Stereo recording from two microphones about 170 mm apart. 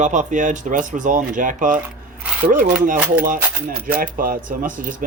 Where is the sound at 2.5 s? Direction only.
50° right (ahead or behind).